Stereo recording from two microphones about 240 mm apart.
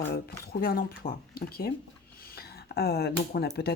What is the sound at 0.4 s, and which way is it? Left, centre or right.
Speech, left.